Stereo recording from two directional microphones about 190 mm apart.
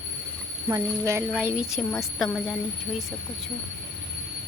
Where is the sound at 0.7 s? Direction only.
15° right (ahead or behind); by 2.6 s centre (ahead or behind).